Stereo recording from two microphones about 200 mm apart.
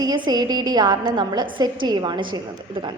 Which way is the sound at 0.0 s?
20° right (ahead or behind).